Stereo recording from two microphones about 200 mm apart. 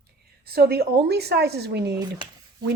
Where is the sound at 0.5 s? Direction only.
50° right (ahead or behind).